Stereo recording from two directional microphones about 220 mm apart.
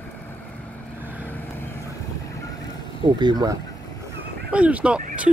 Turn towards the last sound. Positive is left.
turn(degrees=-5)  # may be behind; listen again after turning